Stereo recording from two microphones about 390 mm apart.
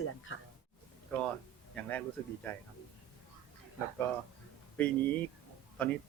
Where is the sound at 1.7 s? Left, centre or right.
Centre.